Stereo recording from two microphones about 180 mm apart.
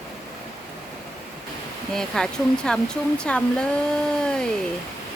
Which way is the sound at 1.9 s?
5° left (ahead or behind).